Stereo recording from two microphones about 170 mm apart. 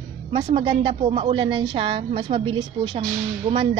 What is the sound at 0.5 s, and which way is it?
Speech, 30° right (ahead or behind).